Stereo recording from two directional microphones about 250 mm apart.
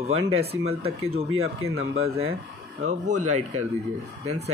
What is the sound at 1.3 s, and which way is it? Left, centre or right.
Speech, right.